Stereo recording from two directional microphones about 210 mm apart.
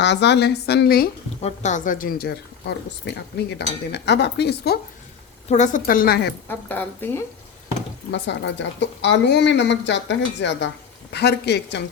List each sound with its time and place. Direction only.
0.0 s speech: 55° left (ahead or behind)
1.4 s speech: 30° left (ahead or behind); by 4.8 s 50° left (ahead or behind)
5.5 s a woman's voice: 35° left (ahead or behind)
6.5 s a woman's voice: 10° left (ahead or behind)
8.1 s a woman's voice: 55° left (ahead or behind)